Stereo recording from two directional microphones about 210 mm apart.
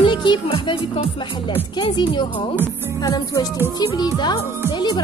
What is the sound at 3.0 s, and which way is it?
Music, 20° left (ahead or behind).